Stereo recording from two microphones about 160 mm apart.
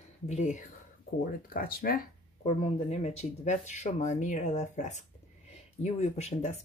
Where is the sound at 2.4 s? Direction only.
45° left (ahead or behind).